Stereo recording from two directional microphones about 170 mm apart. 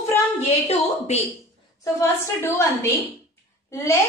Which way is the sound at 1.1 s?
40° left (ahead or behind).